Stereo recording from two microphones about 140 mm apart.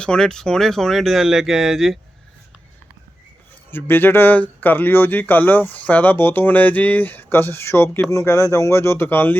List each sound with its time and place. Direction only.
0.0 s speech: 5° left (ahead or behind)
3.7 s speech: 15° left (ahead or behind)